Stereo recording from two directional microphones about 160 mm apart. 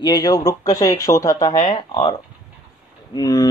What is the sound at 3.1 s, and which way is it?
Speech, 25° left (ahead or behind).